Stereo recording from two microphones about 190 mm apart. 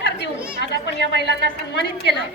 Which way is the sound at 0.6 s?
60° left (ahead or behind).